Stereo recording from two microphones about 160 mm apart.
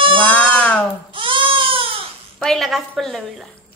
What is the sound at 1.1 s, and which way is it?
Goat, 35° right (ahead or behind).